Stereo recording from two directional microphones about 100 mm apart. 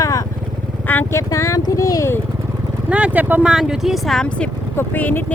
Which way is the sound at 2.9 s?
15° right (ahead or behind).